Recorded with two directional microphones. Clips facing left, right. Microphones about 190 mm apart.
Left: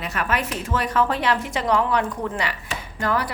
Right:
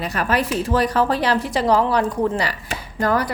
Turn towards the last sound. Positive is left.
turn(degrees=-40)  # may be behind; listen again after turning